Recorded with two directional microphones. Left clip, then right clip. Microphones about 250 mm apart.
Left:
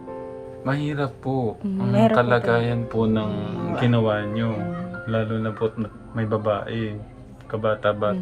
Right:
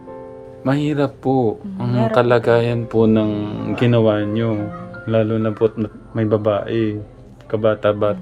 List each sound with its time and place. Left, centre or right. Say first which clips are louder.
0.6 s speech: right 7 dB; right